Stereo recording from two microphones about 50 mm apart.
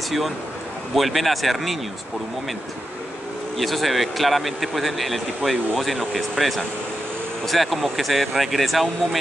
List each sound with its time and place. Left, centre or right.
0.9 s a man's voice: centre
3.5 s a man's voice: centre